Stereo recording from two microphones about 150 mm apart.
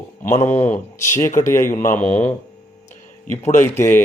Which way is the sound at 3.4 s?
15° left (ahead or behind).